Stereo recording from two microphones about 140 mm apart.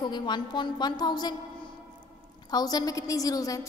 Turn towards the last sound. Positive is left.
turn(degrees=25)  # may be behind; listen again after turning